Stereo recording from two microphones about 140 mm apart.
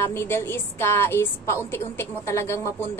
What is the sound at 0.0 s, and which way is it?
A woman's voice, 15° left (ahead or behind).